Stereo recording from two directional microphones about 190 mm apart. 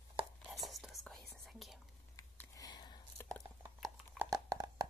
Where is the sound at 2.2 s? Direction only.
15° left (ahead or behind).